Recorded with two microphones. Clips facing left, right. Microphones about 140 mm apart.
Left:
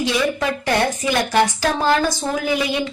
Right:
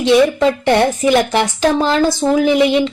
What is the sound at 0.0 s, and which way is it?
A woman's voice, 25° right (ahead or behind).